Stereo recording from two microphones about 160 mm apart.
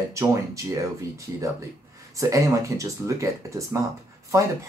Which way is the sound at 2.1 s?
20° right (ahead or behind).